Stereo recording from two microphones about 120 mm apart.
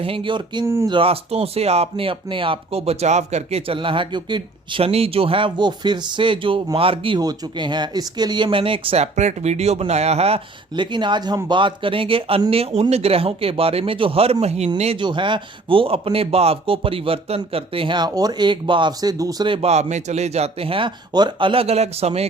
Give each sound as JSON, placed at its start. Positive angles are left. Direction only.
{"t": 0.0, "sound": "speech", "side_deg": -45}
{"t": 0.6, "sound": "speech", "side_deg": -25}
{"t": 0.9, "sound": "speech", "side_deg": -50}
{"t": 3.7, "sound": "speech", "side_deg": -45}
{"t": 4.8, "sound": "speech", "side_deg": -55}
{"t": 7.2, "sound": "speech", "side_deg": -35}
{"t": 9.1, "sound": "speech", "side_deg": -70}
{"t": 10.8, "sound": "speech", "side_deg": -40}
{"t": 14.9, "sound": "speech", "side_deg": -40}
{"t": 19.6, "sound": "speech", "side_deg": -65}